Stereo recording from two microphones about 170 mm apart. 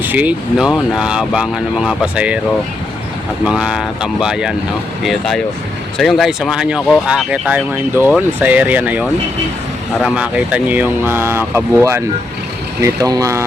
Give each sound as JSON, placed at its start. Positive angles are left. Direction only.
{"t": 0.0, "sound": "speech", "side_deg": -10}
{"t": 3.4, "sound": "speech", "side_deg": -5}